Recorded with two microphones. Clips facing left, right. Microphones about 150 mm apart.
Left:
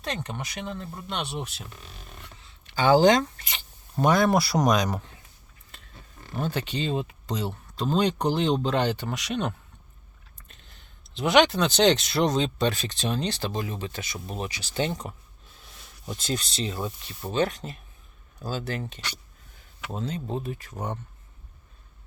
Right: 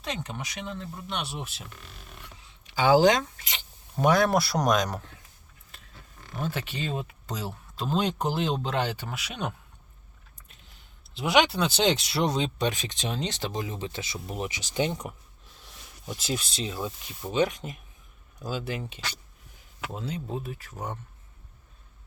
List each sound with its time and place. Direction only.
0.0 s speech: centre (ahead or behind)
2.6 s speech: 10° right (ahead or behind)
6.4 s speech: 5° right (ahead or behind)
20.0 s speech: 10° right (ahead or behind)